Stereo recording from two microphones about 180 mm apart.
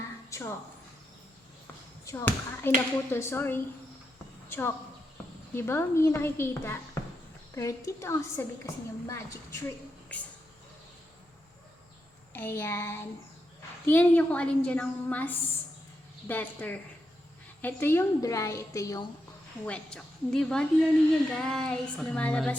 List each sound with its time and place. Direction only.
0.3 s a sound: 15° left (ahead or behind)
2.0 s a woman's voice: 15° left (ahead or behind)
12.3 s a woman's voice: 10° left (ahead or behind)
19.6 s child singing: 5° left (ahead or behind)